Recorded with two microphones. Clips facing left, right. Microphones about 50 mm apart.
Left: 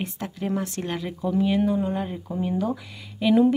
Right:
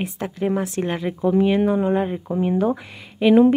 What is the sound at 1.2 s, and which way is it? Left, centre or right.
Speech, right.